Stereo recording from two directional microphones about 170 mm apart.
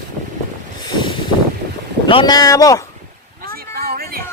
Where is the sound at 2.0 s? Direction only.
30° left (ahead or behind).